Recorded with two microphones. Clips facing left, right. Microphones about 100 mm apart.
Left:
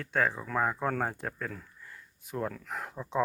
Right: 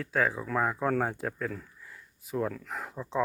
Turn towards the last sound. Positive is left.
turn(degrees=5)  # may be behind; listen again after turning